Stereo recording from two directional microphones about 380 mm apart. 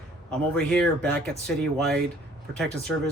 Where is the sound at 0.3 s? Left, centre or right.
Centre.